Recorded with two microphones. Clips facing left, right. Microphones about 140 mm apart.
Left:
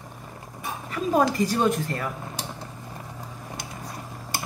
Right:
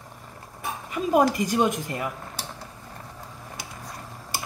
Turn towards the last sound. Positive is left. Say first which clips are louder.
# left 2 dB
turn(degrees=5)  # may be behind; listen again after turning